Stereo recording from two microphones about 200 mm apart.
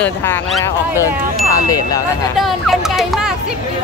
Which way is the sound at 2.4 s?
Centre (ahead or behind).